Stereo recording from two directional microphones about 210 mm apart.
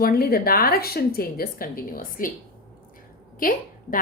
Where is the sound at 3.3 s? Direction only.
40° left (ahead or behind).